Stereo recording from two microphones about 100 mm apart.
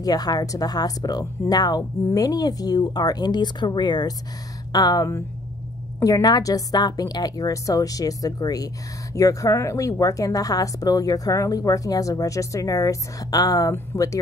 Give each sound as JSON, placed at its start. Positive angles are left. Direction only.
{"t": 0.0, "sound": "speech", "side_deg": 40}